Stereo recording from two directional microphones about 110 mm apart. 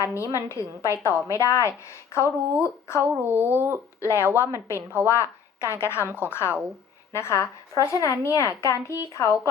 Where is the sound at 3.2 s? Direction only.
20° right (ahead or behind).